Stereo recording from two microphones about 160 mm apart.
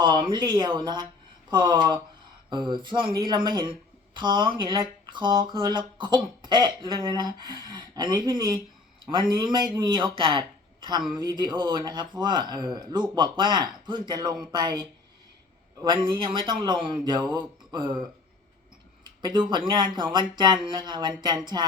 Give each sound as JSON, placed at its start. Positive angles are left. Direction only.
{"t": 0.0, "sound": "speech", "side_deg": -25}
{"t": 19.2, "sound": "speech", "side_deg": -25}